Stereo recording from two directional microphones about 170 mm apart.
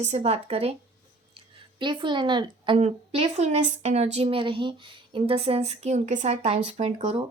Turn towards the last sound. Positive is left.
turn(degrees=-35)  # may be behind; listen again after turning